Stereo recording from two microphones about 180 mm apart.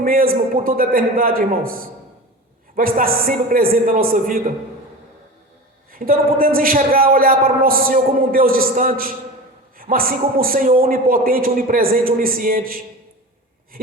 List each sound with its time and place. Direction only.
0.0 s a man's voice: 55° right (ahead or behind)
5.9 s a man's voice: 50° right (ahead or behind)